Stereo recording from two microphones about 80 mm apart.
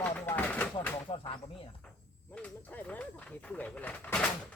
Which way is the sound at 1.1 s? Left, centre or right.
Left.